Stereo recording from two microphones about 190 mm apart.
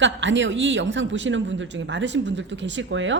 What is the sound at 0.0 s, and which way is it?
A woman's voice, 75° right (ahead or behind).